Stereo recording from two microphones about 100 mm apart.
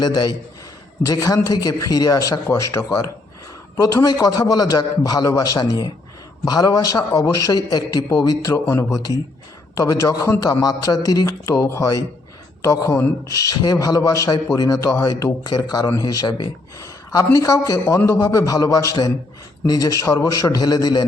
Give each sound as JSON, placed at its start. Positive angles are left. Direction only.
{"t": 0.0, "sound": "a man's voice", "side_deg": 45}
{"t": 8.5, "sound": "a man's voice", "side_deg": 25}
{"t": 16.8, "sound": "a sound", "side_deg": 35}
{"t": 17.3, "sound": "a man's voice", "side_deg": 35}